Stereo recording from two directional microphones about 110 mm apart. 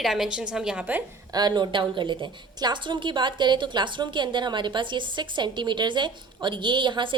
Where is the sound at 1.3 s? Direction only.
40° right (ahead or behind).